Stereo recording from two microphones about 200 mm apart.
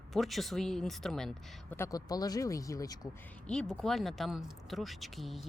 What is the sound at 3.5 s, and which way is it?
Speech, 5° left (ahead or behind).